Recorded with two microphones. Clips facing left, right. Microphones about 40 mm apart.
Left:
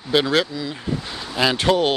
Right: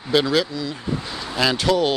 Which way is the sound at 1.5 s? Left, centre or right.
Left.